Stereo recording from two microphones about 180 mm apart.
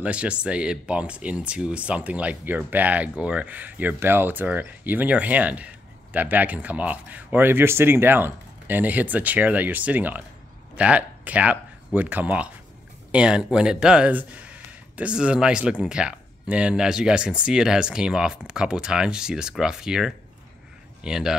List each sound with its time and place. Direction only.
0.0 s speech: 5° right (ahead or behind)